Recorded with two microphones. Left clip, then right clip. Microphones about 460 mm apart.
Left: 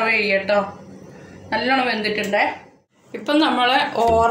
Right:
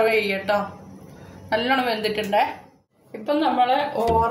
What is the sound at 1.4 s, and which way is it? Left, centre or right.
A woman's voice, right.